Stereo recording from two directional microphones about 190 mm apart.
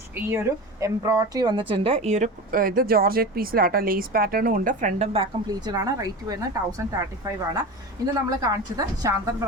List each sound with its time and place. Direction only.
0.2 s a woman's voice: 15° right (ahead or behind)